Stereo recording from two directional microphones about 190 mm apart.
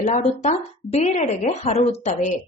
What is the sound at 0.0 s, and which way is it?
A woman's voice, 40° left (ahead or behind).